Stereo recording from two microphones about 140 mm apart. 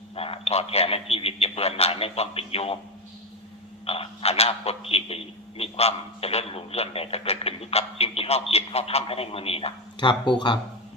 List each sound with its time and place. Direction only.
0.2 s a man's voice: 45° left (ahead or behind)
3.8 s a man's voice: 45° left (ahead or behind)